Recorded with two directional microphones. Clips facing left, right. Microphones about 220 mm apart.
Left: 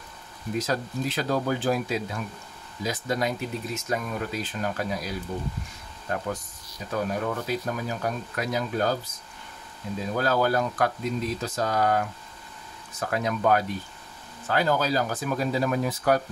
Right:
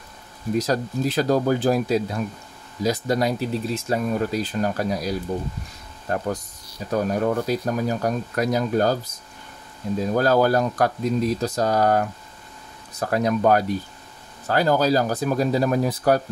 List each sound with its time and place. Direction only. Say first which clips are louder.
0.6 s speech: right 5 dB; 40° right (ahead or behind)
10.1 s speech: right 5 dB; 40° right (ahead or behind)